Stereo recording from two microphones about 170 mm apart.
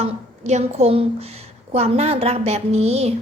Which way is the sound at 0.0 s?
40° right (ahead or behind).